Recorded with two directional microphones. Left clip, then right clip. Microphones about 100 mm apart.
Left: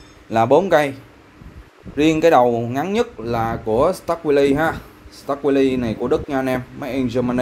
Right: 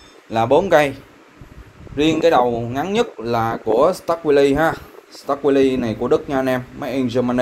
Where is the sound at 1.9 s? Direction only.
60° left (ahead or behind).